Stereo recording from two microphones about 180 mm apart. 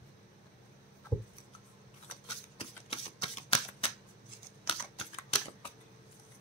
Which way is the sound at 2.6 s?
30° left (ahead or behind).